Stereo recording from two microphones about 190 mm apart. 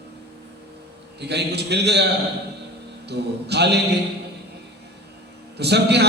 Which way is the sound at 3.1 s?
60° right (ahead or behind).